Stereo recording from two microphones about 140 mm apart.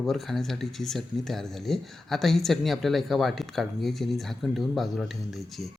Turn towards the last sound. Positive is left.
turn(degrees=0)  # may be behind; listen again after turning